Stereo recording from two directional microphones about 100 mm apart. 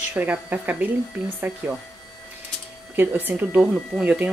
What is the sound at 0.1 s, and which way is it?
Speech, 15° right (ahead or behind).